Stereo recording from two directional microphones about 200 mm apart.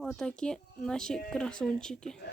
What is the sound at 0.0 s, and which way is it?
Speech, centre (ahead or behind).